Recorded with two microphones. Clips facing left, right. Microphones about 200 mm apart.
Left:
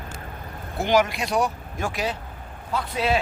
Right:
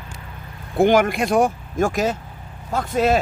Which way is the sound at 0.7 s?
50° right (ahead or behind).